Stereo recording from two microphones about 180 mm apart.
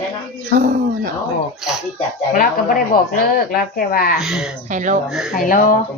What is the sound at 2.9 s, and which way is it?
Speech, 55° left (ahead or behind).